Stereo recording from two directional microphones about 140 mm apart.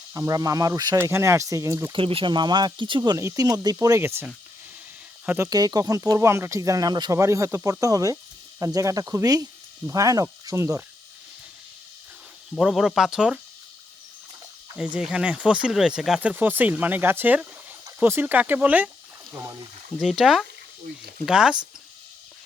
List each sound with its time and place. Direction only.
0.1 s speech: 25° right (ahead or behind)
1.9 s speech: 40° right (ahead or behind); by 5.5 s 10° right (ahead or behind)
5.5 s speech: 25° right (ahead or behind)
12.5 s speech: 5° right (ahead or behind)
14.9 s speech: 10° right (ahead or behind)
20.0 s speech: 5° right (ahead or behind)